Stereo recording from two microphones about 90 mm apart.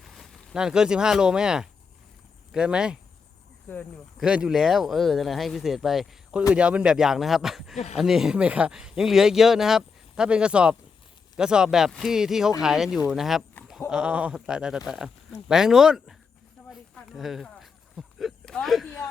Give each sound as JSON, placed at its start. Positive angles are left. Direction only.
{"t": 0.0, "sound": "speech", "side_deg": 0}
{"t": 3.7, "sound": "speech", "side_deg": 20}
{"t": 4.2, "sound": "speech", "side_deg": -10}
{"t": 6.5, "sound": "speech", "side_deg": -15}
{"t": 16.9, "sound": "a sound", "side_deg": 0}
{"t": 18.4, "sound": "speech", "side_deg": 5}